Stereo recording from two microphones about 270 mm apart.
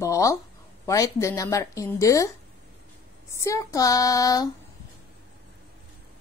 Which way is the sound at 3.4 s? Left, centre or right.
Centre.